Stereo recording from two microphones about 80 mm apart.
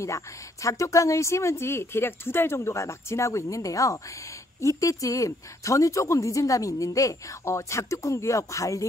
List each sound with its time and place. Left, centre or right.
0.0 s speech: left